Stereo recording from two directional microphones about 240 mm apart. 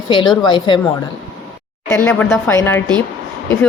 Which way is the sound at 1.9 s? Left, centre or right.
Centre.